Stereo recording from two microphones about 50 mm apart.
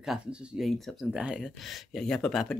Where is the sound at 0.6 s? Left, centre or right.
Centre.